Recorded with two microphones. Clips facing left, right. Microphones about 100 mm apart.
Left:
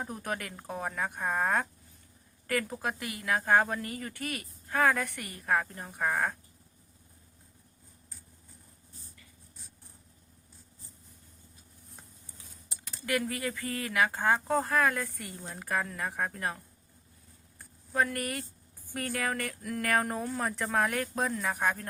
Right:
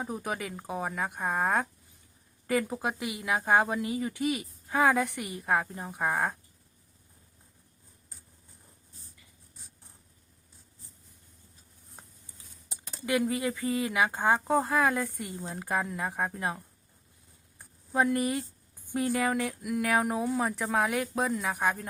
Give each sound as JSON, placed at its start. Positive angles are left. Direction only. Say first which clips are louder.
{"t": 0.0, "sound": "speech", "louder": "right 2 dB", "side_deg": -5}
{"t": 12.8, "sound": "speech", "louder": "right 3 dB", "side_deg": -20}
{"t": 17.6, "sound": "a sound", "louder": "right 2 dB", "side_deg": -15}
{"t": 18.9, "sound": "speech", "louder": "right 5 dB", "side_deg": -15}